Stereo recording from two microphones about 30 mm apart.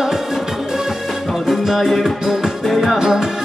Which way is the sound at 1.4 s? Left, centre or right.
Centre.